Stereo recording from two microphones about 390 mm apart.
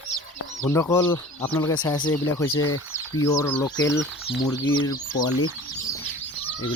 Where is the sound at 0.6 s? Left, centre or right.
Centre.